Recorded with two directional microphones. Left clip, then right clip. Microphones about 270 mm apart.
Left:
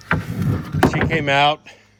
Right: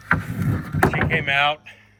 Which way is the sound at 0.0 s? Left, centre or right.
Left.